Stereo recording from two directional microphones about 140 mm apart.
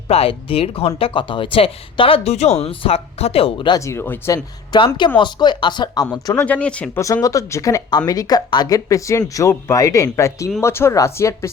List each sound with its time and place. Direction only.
0.1 s speech: 45° left (ahead or behind)
3.8 s speech: 20° left (ahead or behind)
4.7 s speech: 30° left (ahead or behind)
6.3 s speech: 10° left (ahead or behind)
7.0 s speech: 25° left (ahead or behind)